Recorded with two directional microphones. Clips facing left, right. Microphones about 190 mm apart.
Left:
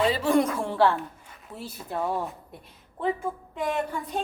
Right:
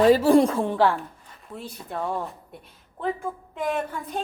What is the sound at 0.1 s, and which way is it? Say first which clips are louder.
Speech: right 6 dB; 35° right (ahead or behind).